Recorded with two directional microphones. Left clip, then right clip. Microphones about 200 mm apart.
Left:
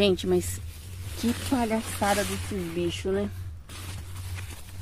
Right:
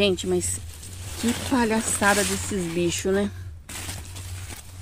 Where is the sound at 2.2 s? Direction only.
40° right (ahead or behind).